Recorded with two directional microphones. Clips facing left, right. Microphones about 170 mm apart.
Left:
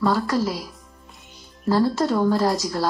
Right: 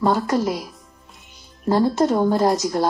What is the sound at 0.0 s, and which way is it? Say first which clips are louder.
Speech: right 2 dB; 20° right (ahead or behind).